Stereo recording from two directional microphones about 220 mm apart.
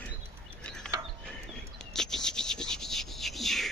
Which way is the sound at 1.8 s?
Centre (ahead or behind).